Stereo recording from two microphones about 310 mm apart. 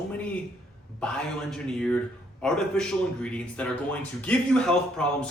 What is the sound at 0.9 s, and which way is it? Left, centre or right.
Speech, centre.